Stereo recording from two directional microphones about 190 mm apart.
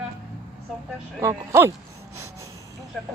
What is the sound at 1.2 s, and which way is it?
Speech, 15° right (ahead or behind).